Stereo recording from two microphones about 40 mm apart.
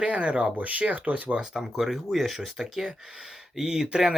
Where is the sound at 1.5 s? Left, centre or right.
Centre.